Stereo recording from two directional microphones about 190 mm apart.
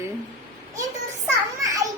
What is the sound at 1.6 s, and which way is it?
Children playing, 15° right (ahead or behind).